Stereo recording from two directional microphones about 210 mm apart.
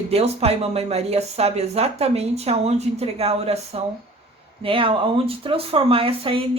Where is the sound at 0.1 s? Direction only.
30° right (ahead or behind).